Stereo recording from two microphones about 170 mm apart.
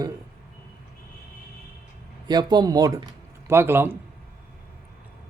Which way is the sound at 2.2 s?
25° right (ahead or behind).